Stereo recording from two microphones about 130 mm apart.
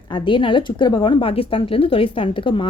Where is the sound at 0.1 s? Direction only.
40° left (ahead or behind).